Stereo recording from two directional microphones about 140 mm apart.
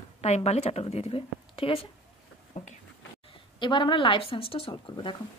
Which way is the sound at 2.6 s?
60° left (ahead or behind).